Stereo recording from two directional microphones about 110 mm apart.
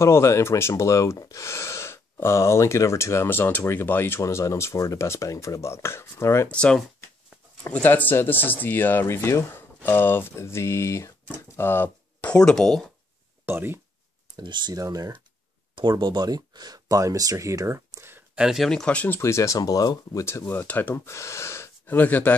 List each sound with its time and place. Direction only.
0.0 s speech: 25° left (ahead or behind)
6.5 s speech: 10° left (ahead or behind)
13.5 s speech: 20° right (ahead or behind)
14.3 s speech: 40° right (ahead or behind); by 18.4 s 20° right (ahead or behind)
18.4 s speech: 5° right (ahead or behind)
18.7 s speech: 10° left (ahead or behind); by 20.2 s 35° left (ahead or behind)
20.2 s speech: 20° left (ahead or behind)